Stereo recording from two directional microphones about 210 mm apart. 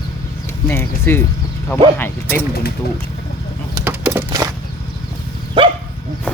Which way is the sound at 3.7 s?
10° right (ahead or behind).